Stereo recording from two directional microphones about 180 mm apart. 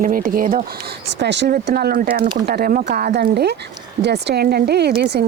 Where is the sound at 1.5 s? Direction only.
60° right (ahead or behind).